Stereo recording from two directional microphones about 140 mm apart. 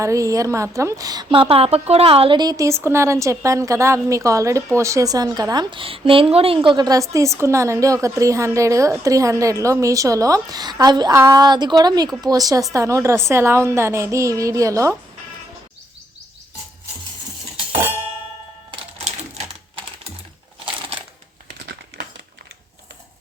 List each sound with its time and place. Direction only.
0.0 s a woman's voice: 25° right (ahead or behind)
18.7 s music: 45° right (ahead or behind)